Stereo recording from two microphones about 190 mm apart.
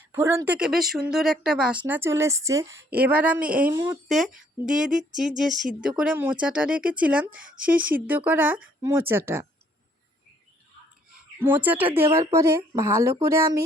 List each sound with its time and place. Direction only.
0.1 s speech: 15° right (ahead or behind)
11.3 s speech: 10° right (ahead or behind)